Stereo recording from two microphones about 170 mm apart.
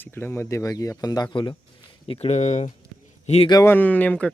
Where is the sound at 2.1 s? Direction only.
40° left (ahead or behind).